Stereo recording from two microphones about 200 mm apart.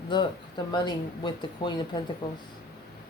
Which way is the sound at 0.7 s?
20° left (ahead or behind).